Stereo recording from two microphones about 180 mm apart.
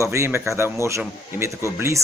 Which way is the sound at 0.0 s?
15° right (ahead or behind).